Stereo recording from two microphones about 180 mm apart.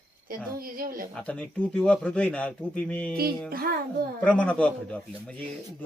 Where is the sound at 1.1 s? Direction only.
5° left (ahead or behind).